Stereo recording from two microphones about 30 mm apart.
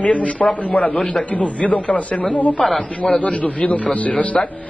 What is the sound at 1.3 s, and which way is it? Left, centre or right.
Speech, left.